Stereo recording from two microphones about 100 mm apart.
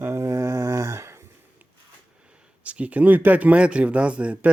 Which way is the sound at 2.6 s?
15° right (ahead or behind).